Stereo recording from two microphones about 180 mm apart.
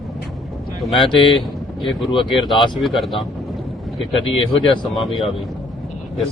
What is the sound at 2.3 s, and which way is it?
Speech, centre (ahead or behind).